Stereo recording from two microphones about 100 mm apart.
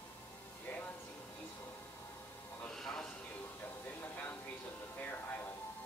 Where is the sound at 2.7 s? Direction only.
5° left (ahead or behind).